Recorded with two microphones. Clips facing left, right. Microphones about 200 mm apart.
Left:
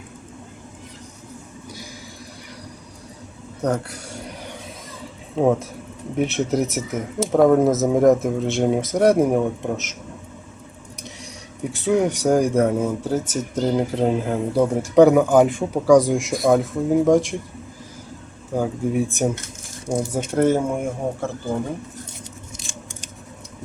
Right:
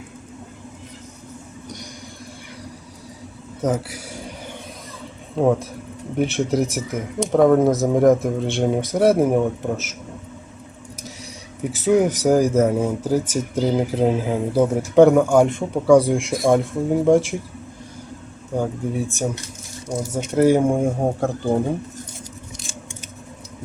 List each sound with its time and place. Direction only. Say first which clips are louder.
3.6 s a sound: right 1 dB; 5° right (ahead or behind)
5.4 s speech: even; centre (ahead or behind)
11.6 s speech: right 2 dB; 5° right (ahead or behind)
18.9 s speech: left 3 dB; 15° left (ahead or behind)
20.3 s speech: right 3 dB; 10° right (ahead or behind)
20.6 s speech: right 5 dB; 30° right (ahead or behind)